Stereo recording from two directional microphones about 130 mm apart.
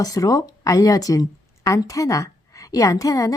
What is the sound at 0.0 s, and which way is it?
Speech, 30° left (ahead or behind).